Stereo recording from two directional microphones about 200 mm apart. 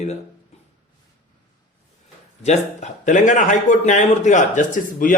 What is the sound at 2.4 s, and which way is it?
A man's voice, 35° left (ahead or behind).